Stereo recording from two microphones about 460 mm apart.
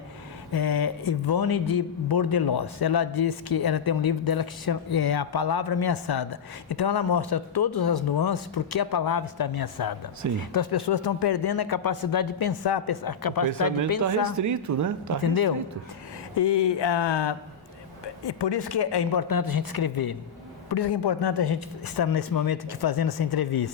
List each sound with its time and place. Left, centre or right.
0.5 s a man's voice: left
14.0 s speech: right
15.2 s a man's voice: left
16.3 s a man's voice: left